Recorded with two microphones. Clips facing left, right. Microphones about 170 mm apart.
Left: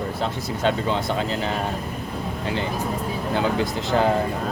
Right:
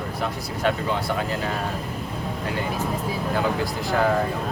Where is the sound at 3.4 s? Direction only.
20° left (ahead or behind).